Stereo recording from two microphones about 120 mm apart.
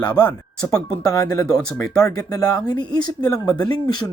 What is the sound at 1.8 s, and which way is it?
Speech, 30° left (ahead or behind).